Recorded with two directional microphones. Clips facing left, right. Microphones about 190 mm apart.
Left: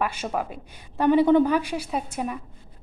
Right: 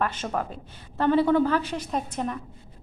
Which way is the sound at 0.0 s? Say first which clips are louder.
Left 1 dB; 10° left (ahead or behind).